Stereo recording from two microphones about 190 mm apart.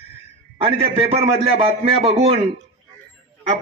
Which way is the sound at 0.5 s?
30° right (ahead or behind).